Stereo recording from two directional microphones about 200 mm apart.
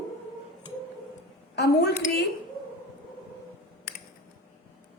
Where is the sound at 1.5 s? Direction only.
55° left (ahead or behind).